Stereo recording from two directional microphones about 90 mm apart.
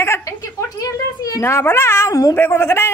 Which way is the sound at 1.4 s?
25° left (ahead or behind).